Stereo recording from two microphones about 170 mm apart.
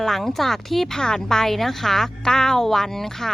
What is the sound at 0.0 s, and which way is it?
A woman's voice, centre (ahead or behind).